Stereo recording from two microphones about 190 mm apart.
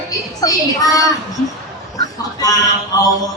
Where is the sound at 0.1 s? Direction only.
20° left (ahead or behind).